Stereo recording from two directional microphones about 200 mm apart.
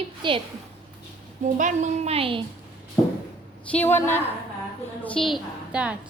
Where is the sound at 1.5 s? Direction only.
40° right (ahead or behind).